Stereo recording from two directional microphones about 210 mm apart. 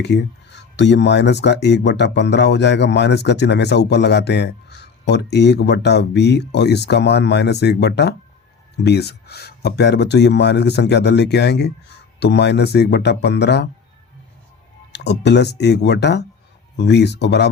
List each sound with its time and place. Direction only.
0.0 s speech: 55° left (ahead or behind)
14.9 s speech: 55° left (ahead or behind)